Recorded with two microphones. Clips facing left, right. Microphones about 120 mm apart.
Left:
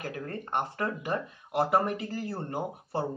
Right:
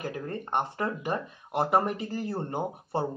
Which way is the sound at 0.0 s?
25° right (ahead or behind).